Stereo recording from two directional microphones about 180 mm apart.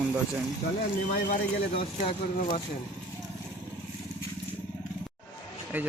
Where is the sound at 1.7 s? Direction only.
30° left (ahead or behind).